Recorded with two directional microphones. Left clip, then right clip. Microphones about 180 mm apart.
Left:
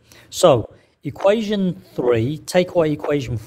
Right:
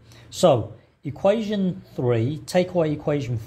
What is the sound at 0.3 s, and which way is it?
A man's voice, 40° left (ahead or behind).